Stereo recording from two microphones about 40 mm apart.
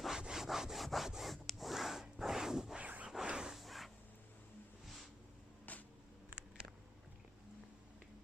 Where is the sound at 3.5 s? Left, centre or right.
Centre.